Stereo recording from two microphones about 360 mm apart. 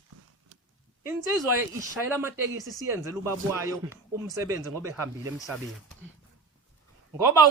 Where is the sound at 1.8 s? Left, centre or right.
Centre.